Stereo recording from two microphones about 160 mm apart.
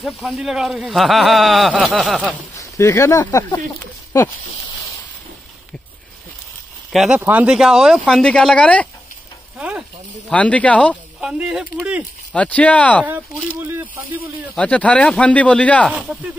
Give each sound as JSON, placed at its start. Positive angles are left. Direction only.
{"t": 0.0, "sound": "speech", "side_deg": 0}
{"t": 2.8, "sound": "speech", "side_deg": 15}
{"t": 3.8, "sound": "a sound", "side_deg": 15}
{"t": 6.9, "sound": "speech", "side_deg": 0}
{"t": 9.6, "sound": "sizzle", "side_deg": -10}
{"t": 10.3, "sound": "speech", "side_deg": 10}
{"t": 11.1, "sound": "speech", "side_deg": -5}
{"t": 12.3, "sound": "speech", "side_deg": 10}
{"t": 14.5, "sound": "speech", "side_deg": 10}
{"t": 15.9, "sound": "speech", "side_deg": -10}